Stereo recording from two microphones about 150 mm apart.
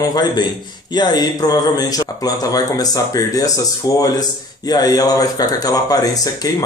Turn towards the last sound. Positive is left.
turn(degrees=25)  # may be behind; listen again after turning